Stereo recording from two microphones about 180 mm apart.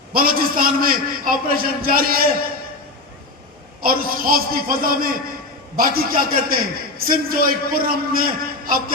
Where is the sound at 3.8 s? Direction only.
55° right (ahead or behind).